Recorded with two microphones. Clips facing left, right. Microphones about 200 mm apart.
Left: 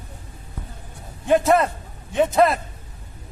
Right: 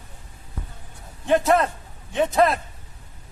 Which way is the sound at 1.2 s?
5° left (ahead or behind).